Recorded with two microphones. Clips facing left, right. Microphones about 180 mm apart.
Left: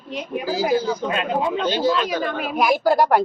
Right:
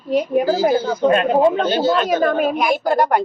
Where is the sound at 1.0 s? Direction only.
50° right (ahead or behind).